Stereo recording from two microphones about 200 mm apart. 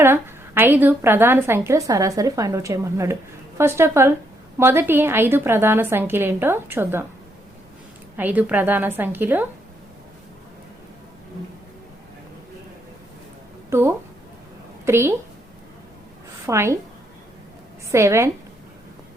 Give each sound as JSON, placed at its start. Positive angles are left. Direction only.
{"t": 0.0, "sound": "a woman's voice", "side_deg": -10}
{"t": 8.1, "sound": "a woman's voice", "side_deg": -10}
{"t": 13.7, "sound": "a woman's voice", "side_deg": -10}
{"t": 16.5, "sound": "a woman's voice", "side_deg": -15}
{"t": 17.9, "sound": "a woman's voice", "side_deg": -15}